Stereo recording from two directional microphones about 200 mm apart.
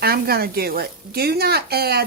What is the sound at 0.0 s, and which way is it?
Speech, 50° right (ahead or behind).